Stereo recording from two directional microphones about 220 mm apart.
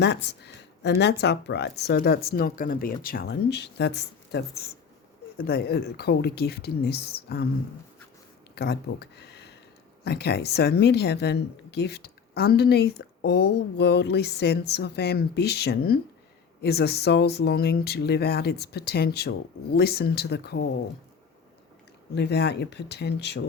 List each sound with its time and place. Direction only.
0.0 s speech: 50° left (ahead or behind)
8.5 s speech: 45° left (ahead or behind)
22.1 s speech: 50° left (ahead or behind)